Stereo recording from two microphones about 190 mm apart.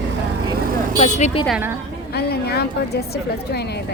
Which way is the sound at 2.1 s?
55° left (ahead or behind).